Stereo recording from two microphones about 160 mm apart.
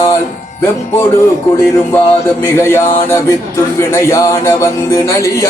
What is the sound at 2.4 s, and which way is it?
Music, 15° left (ahead or behind).